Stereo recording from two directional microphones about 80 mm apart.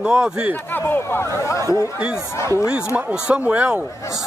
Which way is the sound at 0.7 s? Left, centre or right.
Left.